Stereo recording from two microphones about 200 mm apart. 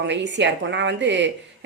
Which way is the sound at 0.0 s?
65° right (ahead or behind).